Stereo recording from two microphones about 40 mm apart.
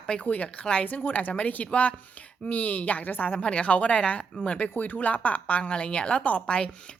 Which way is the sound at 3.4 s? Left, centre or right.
Left.